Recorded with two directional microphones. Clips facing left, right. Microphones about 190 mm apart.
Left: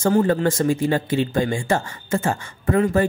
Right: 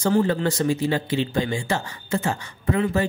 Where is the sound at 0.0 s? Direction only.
45° left (ahead or behind).